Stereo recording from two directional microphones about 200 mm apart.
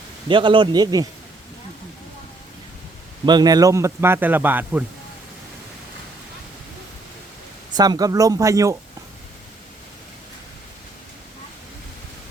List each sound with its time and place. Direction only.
0.3 s speech: 25° right (ahead or behind)
3.2 s a man's voice: 20° right (ahead or behind)
7.8 s a man's voice: 20° right (ahead or behind)